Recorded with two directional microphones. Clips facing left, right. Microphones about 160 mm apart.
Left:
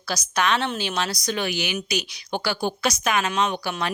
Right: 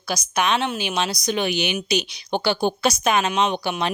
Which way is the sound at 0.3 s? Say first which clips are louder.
Right 1 dB; 15° right (ahead or behind).